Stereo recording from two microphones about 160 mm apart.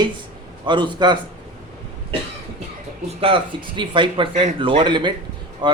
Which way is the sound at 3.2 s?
35° right (ahead or behind).